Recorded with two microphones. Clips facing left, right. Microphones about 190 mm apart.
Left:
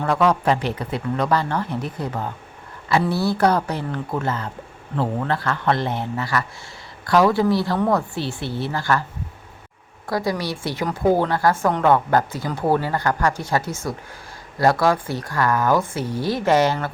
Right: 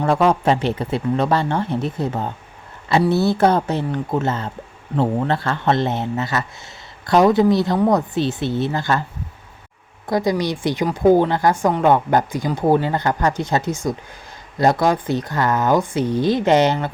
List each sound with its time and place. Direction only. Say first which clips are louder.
0.0 s a woman's voice: right 2 dB; 25° right (ahead or behind)
10.1 s a woman's voice: right 4 dB; 20° right (ahead or behind)